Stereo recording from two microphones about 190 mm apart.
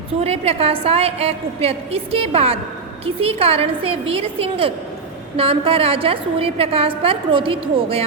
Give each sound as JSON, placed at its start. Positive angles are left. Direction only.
{"t": 0.2, "sound": "a woman's voice", "side_deg": -30}